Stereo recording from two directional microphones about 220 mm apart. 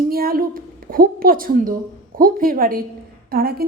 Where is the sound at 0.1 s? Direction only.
40° right (ahead or behind).